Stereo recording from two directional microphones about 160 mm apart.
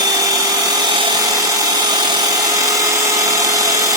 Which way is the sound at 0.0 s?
25° right (ahead or behind).